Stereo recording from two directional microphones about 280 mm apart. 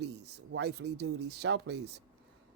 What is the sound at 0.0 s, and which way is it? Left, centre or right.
Speech, right.